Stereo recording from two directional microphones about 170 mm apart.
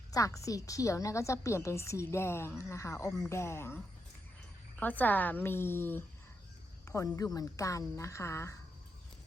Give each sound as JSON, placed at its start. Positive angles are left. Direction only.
{"t": 0.1, "sound": "a woman's voice", "side_deg": 20}
{"t": 4.8, "sound": "a woman's voice", "side_deg": 10}